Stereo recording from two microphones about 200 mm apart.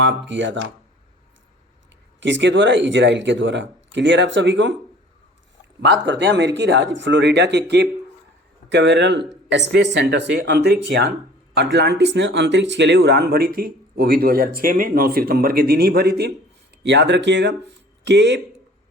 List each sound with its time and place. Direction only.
0.0 s speech: 65° right (ahead or behind)
2.2 s speech: 65° right (ahead or behind)
6.1 s speech: 60° right (ahead or behind)